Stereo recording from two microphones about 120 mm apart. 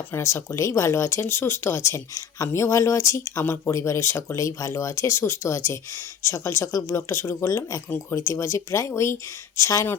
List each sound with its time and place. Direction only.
0.1 s speech: 25° left (ahead or behind)